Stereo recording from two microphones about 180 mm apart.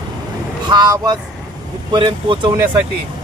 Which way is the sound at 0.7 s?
25° right (ahead or behind).